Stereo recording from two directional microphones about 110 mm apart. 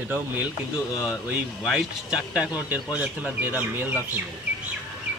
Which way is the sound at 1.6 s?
Centre (ahead or behind).